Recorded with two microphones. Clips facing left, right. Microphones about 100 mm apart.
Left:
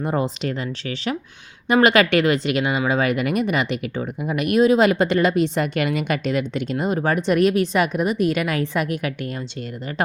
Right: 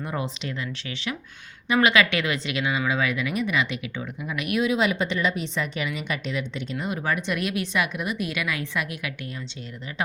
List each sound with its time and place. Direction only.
0.0 s a woman's voice: 40° left (ahead or behind)